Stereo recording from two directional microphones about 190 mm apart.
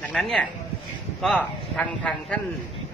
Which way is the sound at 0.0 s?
5° left (ahead or behind).